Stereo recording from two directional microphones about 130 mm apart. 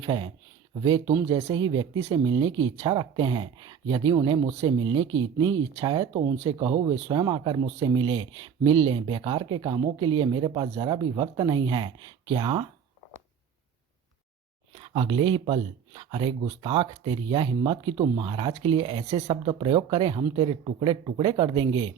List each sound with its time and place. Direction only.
0.0 s speech: 40° right (ahead or behind)
1.1 s speech: 25° right (ahead or behind)
1.5 s speech: 40° right (ahead or behind)
14.8 s speech: 40° right (ahead or behind)